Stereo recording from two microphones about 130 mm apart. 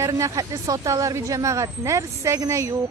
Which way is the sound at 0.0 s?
25° right (ahead or behind).